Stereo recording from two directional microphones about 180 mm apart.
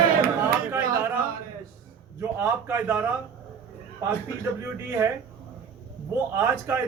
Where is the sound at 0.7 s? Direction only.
15° right (ahead or behind).